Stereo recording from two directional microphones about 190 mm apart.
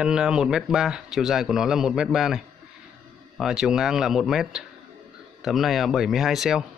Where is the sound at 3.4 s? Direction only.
5° right (ahead or behind).